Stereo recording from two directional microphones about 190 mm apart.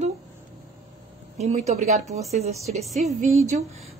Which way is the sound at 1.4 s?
35° right (ahead or behind).